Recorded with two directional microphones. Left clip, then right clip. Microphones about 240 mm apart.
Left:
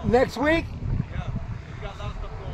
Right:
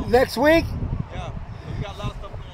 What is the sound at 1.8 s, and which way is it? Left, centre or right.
Vehicle, right.